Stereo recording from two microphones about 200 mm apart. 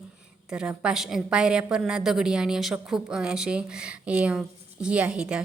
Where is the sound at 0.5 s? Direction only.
5° right (ahead or behind).